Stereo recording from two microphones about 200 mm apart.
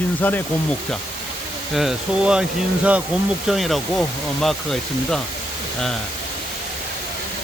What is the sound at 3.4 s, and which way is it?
Speech, centre (ahead or behind).